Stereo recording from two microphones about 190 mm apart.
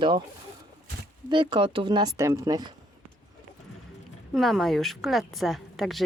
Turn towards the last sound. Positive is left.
turn(degrees=0)  # may be behind; listen again after turning